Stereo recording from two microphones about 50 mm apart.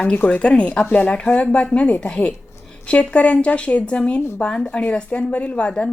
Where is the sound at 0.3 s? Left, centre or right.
Left.